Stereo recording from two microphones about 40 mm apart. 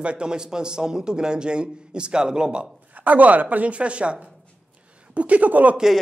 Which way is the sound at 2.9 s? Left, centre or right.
Right.